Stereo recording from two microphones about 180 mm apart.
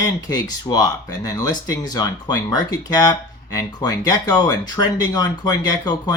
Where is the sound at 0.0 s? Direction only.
20° left (ahead or behind).